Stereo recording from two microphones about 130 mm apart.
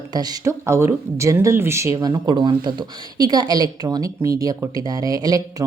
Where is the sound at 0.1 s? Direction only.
30° right (ahead or behind).